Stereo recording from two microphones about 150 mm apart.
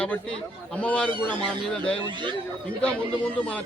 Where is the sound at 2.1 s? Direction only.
30° right (ahead or behind).